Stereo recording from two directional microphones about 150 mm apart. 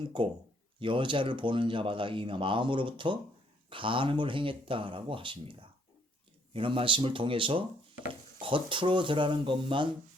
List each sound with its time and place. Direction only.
0.0 s speech: 35° right (ahead or behind)